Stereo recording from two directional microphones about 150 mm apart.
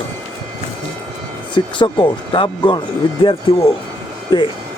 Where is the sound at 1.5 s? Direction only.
30° left (ahead or behind).